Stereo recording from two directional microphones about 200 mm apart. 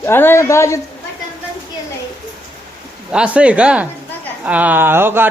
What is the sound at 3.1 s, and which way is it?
A man's voice, 5° right (ahead or behind).